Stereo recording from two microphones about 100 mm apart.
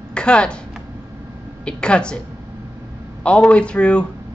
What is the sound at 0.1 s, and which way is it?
Speech, 10° left (ahead or behind).